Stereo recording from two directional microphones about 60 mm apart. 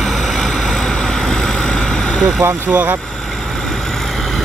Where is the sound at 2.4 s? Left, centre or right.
Right.